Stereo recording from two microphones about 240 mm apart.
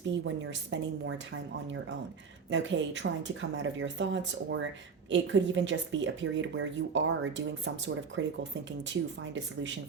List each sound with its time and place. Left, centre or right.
0.3 s speech: right
2.5 s speech: right